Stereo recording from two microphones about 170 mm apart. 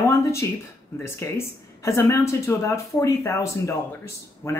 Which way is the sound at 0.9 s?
15° left (ahead or behind).